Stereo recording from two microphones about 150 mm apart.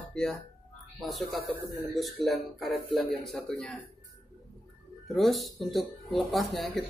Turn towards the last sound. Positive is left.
turn(degrees=0)  # may be behind; listen again after turning